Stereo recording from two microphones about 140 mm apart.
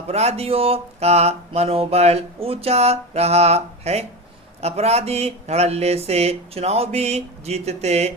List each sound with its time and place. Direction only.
0.1 s mantra: 45° right (ahead or behind)